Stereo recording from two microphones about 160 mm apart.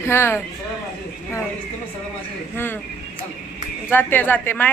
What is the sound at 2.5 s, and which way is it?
Speech, 15° left (ahead or behind).